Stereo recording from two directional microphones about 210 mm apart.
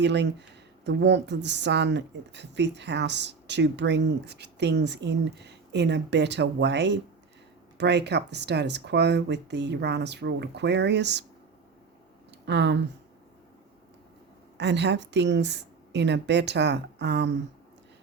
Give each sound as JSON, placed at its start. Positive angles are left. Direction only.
{"t": 0.0, "sound": "speech", "side_deg": -55}
{"t": 12.5, "sound": "speech", "side_deg": -55}
{"t": 14.6, "sound": "speech", "side_deg": -55}